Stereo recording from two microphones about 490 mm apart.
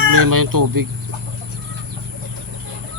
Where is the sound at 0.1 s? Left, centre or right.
Right.